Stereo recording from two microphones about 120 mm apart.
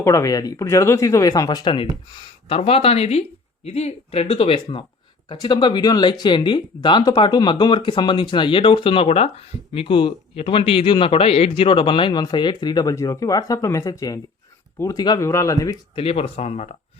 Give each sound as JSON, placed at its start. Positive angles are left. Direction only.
{"t": 0.0, "sound": "speech", "side_deg": 25}
{"t": 2.5, "sound": "speech", "side_deg": 55}
{"t": 5.3, "sound": "speech", "side_deg": 40}
{"t": 16.0, "sound": "speech", "side_deg": 55}